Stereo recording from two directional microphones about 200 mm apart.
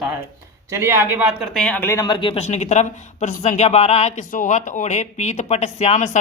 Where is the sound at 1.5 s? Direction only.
5° left (ahead or behind).